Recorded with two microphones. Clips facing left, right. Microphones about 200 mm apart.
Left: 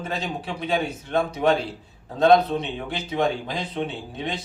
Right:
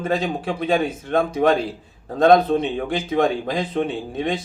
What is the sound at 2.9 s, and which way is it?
A man's voice, 50° right (ahead or behind).